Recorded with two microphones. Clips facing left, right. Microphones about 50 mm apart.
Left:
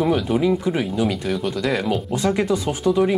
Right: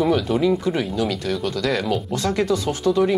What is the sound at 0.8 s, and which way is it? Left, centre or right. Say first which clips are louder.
Speech: left 1 dB; centre.